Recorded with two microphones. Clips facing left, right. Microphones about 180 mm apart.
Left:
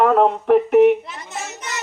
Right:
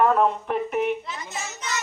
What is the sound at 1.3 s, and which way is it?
Children playing, 60° left (ahead or behind).